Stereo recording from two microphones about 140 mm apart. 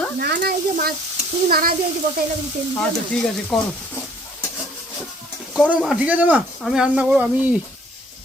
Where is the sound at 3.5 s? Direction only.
Centre (ahead or behind).